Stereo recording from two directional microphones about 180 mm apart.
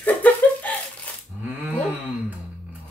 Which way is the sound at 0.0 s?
10° left (ahead or behind).